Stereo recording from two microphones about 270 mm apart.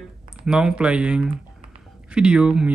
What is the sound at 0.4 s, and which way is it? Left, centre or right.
Speech, centre.